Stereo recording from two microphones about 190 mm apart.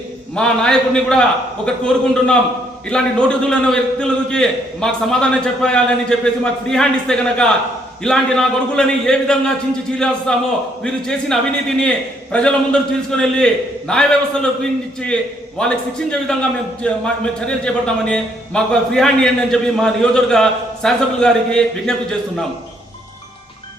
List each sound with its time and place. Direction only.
0.3 s a man's voice: 5° left (ahead or behind)